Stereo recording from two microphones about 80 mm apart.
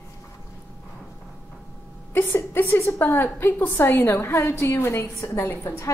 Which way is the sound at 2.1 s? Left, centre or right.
Left.